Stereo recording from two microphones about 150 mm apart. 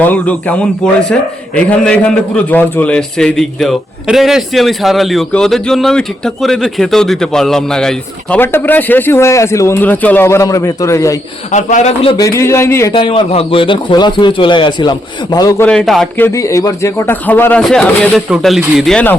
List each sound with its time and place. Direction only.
0.0 s a man's voice: 10° left (ahead or behind)
11.5 s a man's voice: 50° left (ahead or behind)
12.2 s speech: 20° left (ahead or behind)
12.9 s a man's voice: 35° left (ahead or behind)
15.6 s a man's voice: 5° left (ahead or behind)
16.1 s a man's voice: 15° left (ahead or behind)